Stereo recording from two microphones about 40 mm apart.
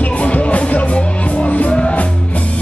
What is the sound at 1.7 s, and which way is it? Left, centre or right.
Music, left.